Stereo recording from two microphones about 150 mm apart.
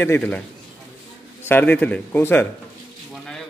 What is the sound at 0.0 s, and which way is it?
Speech, 10° left (ahead or behind).